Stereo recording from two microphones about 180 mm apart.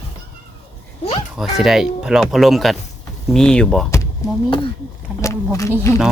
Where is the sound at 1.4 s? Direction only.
Centre (ahead or behind).